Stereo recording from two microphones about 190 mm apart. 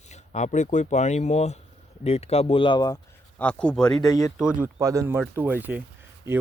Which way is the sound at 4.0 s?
15° left (ahead or behind).